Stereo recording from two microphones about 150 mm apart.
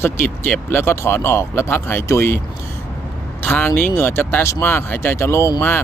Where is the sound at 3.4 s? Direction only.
10° left (ahead or behind).